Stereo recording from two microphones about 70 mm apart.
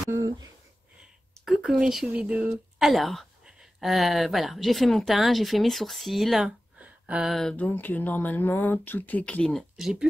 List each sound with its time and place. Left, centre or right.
1.8 s speech: centre
2.1 s speech: centre
3.4 s a sound: centre
3.9 s speech: centre
6.8 s a sound: centre
7.2 s speech: centre
7.5 s speech: left
9.4 s speech: centre
9.8 s speech: centre